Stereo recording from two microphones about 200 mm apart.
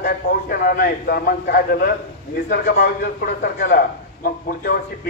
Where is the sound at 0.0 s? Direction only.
50° left (ahead or behind).